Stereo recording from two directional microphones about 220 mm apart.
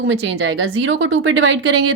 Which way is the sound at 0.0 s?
55° right (ahead or behind).